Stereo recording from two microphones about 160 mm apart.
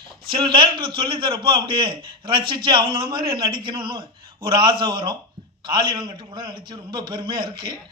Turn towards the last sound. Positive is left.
turn(degrees=-25)  # may be behind; listen again after turning